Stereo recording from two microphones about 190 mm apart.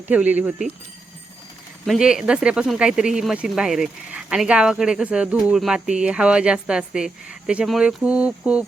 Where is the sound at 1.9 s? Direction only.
5° right (ahead or behind).